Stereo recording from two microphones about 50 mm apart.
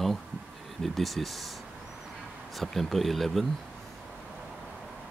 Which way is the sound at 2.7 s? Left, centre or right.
Centre.